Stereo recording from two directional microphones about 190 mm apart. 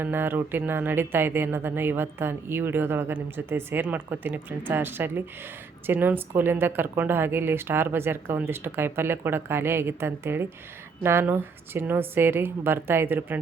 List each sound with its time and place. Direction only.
0.0 s speech: 10° right (ahead or behind)